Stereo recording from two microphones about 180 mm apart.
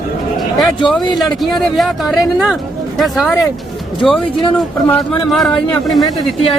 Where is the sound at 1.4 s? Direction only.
Centre (ahead or behind).